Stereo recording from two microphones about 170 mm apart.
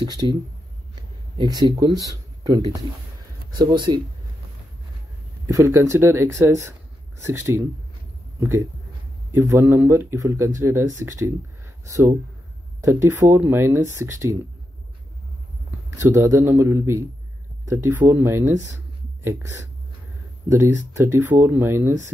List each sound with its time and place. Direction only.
0.0 s speech: 25° right (ahead or behind)
1.4 s speech: 25° right (ahead or behind)
5.5 s speech: 15° right (ahead or behind)
16.0 s speech: 15° right (ahead or behind)